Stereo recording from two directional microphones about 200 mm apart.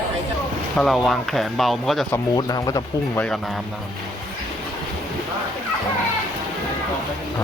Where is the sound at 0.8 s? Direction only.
Centre (ahead or behind).